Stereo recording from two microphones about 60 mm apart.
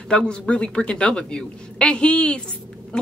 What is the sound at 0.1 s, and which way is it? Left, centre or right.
A woman's voice, centre.